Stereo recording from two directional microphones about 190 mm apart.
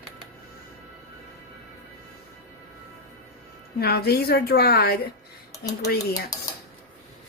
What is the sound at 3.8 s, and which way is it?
A woman's voice, 55° left (ahead or behind).